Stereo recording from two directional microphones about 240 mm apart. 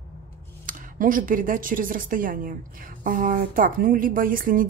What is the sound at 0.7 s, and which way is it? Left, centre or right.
A woman's voice, right.